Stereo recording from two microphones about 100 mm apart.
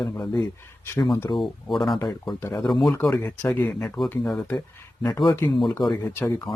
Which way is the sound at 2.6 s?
Centre (ahead or behind).